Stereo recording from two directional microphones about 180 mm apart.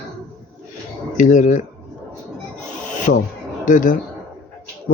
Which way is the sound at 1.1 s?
45° left (ahead or behind).